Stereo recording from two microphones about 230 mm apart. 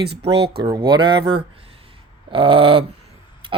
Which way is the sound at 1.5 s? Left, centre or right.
Right.